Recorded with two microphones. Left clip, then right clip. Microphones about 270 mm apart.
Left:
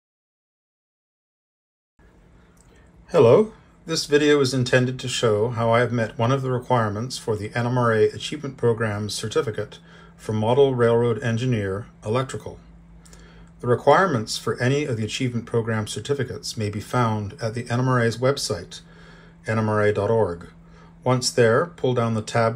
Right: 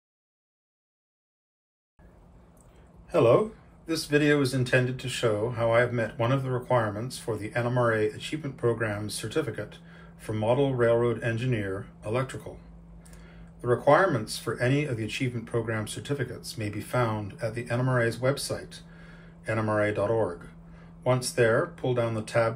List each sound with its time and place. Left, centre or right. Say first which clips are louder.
3.8 s speech: left 6 dB; left
13.6 s speech: left 4 dB; left